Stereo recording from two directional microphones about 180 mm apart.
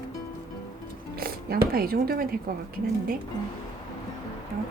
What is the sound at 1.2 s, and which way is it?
Speech, 60° right (ahead or behind).